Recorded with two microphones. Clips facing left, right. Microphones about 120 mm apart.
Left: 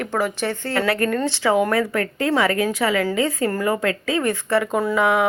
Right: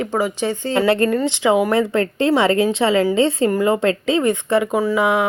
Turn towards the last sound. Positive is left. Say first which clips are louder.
# right 2 dB
turn(degrees=-10)  # may be behind; listen again after turning